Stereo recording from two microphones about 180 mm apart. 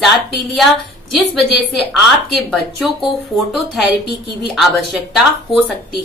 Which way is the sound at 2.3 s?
Centre (ahead or behind).